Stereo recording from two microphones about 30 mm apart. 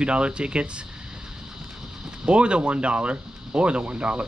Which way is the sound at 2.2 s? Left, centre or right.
Right.